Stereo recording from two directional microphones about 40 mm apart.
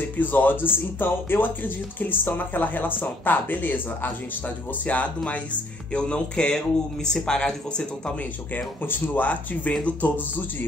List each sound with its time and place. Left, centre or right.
0.2 s speech: left
4.8 s speech: left
5.9 s music: left
7.1 s speech: centre
8.8 s speech: left
9.3 s speech: left